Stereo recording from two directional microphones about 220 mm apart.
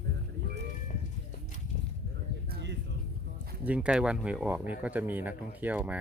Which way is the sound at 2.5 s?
50° right (ahead or behind).